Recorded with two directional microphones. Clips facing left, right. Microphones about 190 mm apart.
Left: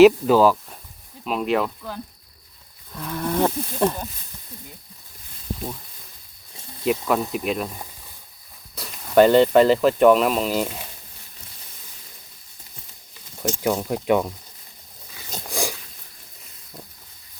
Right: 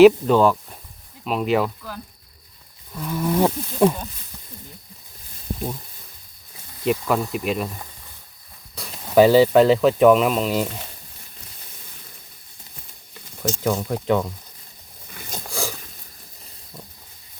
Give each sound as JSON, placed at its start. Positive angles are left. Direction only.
{"t": 0.0, "sound": "speech", "side_deg": 5}
{"t": 3.0, "sound": "speech", "side_deg": -5}
{"t": 6.8, "sound": "speech", "side_deg": 0}
{"t": 13.6, "sound": "speech", "side_deg": 10}
{"t": 15.6, "sound": "a sound", "side_deg": 15}